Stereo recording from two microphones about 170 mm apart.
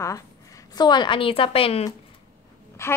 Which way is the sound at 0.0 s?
20° left (ahead or behind).